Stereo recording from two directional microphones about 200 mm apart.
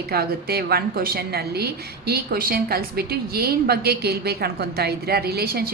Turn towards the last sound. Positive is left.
turn(degrees=-50)  # may be behind; listen again after turning